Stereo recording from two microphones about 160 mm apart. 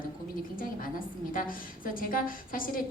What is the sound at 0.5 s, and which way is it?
A woman's voice, 60° left (ahead or behind).